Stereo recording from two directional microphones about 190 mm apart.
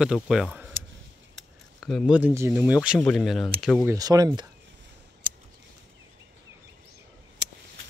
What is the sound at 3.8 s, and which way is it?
Speech, 20° right (ahead or behind).